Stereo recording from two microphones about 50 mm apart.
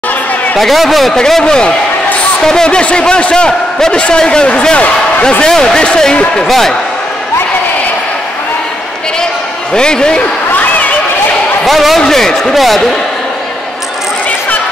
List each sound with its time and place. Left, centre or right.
0.6 s a man's voice: centre
1.1 s a man's voice: centre
5.5 s a man's voice: centre
9.8 s speech: centre
10.5 s a sound: left
11.6 s a man's voice: centre